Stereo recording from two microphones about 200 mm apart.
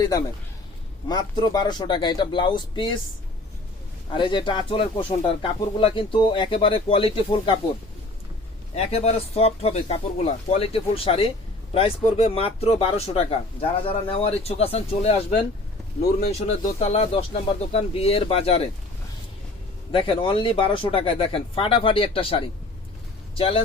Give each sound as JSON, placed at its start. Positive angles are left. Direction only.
{"t": 1.0, "sound": "speech", "side_deg": 20}
{"t": 4.2, "sound": "speech", "side_deg": 25}
{"t": 8.7, "sound": "speech", "side_deg": 30}
{"t": 16.5, "sound": "speech", "side_deg": 30}
{"t": 19.9, "sound": "speech", "side_deg": 25}